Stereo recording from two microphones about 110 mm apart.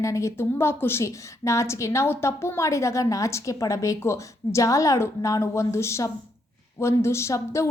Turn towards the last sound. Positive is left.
turn(degrees=25)  # may be behind; listen again after turning